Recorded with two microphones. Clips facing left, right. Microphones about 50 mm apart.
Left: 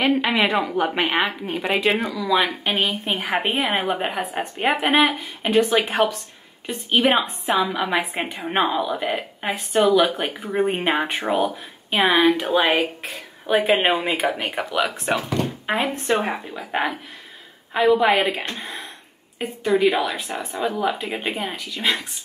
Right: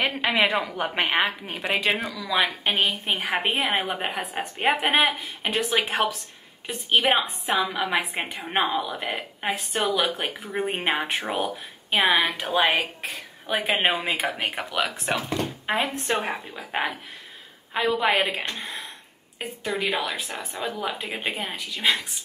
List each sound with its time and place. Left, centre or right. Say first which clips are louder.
0.0 s a woman's voice: left 3 dB; centre
6.7 s a woman's voice: left 3 dB; centre
18.0 s a woman's voice: left 4 dB; centre